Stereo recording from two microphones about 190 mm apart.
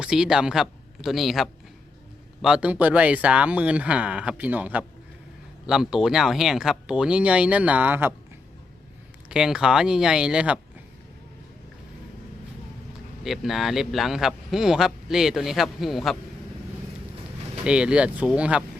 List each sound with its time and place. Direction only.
0.0 s speech: 5° right (ahead or behind)
9.3 s speech: 5° right (ahead or behind)
13.2 s speech: centre (ahead or behind)
17.6 s speech: 5° right (ahead or behind)